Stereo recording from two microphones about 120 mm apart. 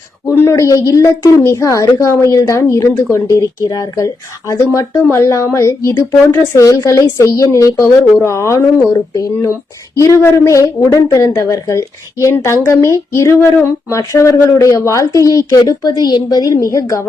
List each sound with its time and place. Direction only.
0.3 s speech: 25° left (ahead or behind)
9.9 s speech: 25° left (ahead or behind)